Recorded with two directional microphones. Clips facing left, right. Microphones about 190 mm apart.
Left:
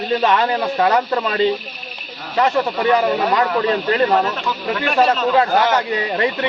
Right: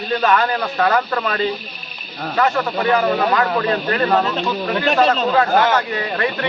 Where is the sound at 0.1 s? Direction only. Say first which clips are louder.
Even; 25° left (ahead or behind).